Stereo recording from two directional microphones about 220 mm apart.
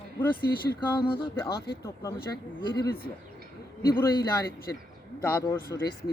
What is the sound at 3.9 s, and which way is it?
Speech, 15° left (ahead or behind).